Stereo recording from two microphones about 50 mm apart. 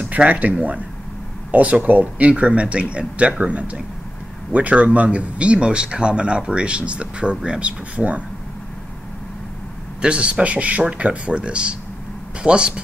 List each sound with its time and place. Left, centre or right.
0.0 s speech: right
10.0 s speech: right